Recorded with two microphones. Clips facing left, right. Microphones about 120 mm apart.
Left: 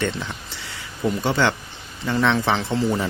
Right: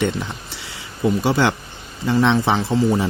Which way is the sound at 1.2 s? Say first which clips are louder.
Right 3 dB; 10° right (ahead or behind).